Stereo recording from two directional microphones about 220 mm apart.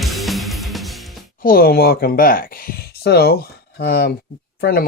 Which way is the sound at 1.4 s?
40° left (ahead or behind).